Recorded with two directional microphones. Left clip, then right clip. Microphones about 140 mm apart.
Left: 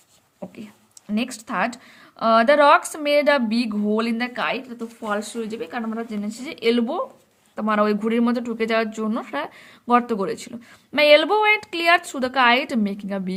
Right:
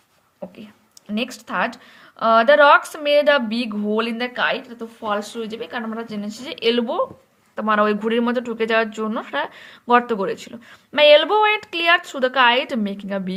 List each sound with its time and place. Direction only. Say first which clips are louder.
1.1 s speech: right 2 dB; 40° left (ahead or behind)